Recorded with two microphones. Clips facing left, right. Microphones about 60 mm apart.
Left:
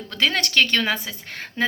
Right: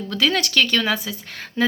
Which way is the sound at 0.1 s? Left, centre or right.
Left.